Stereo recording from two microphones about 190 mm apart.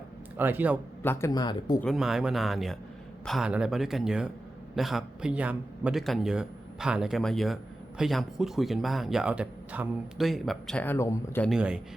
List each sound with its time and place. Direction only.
0.3 s a man's voice: 10° right (ahead or behind)
1.0 s speech: 10° left (ahead or behind)
1.3 s speech: 20° left (ahead or behind)
1.8 s a man's voice: centre (ahead or behind)
11.5 s a man's voice: 5° right (ahead or behind)